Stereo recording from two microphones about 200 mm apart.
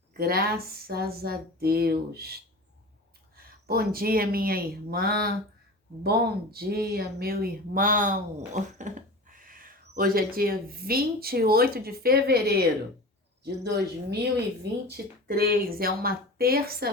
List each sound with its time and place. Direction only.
0.1 s speech: 50° right (ahead or behind)